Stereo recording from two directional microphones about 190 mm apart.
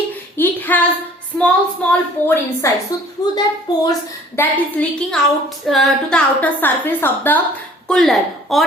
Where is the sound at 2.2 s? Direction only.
10° left (ahead or behind).